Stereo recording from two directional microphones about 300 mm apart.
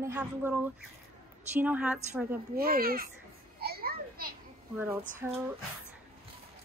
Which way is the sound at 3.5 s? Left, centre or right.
Right.